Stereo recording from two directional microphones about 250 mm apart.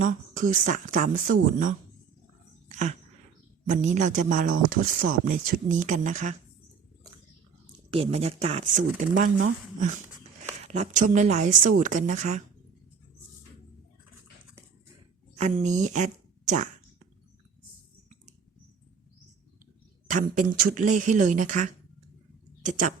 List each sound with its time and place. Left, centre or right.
0.0 s speech: right
3.7 s speech: right
7.9 s speech: right
15.4 s speech: right
20.1 s speech: right